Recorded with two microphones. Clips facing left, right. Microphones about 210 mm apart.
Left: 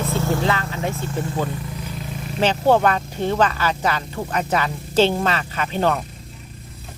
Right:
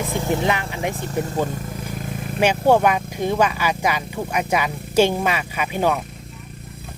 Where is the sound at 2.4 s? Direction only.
15° right (ahead or behind).